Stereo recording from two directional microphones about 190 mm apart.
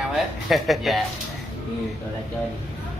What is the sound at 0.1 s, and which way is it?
Speech, centre (ahead or behind).